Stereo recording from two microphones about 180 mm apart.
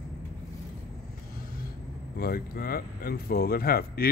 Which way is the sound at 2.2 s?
55° left (ahead or behind).